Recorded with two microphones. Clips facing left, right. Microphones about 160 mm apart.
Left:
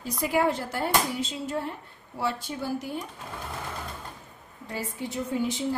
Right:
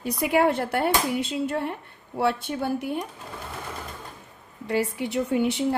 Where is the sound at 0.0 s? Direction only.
65° right (ahead or behind).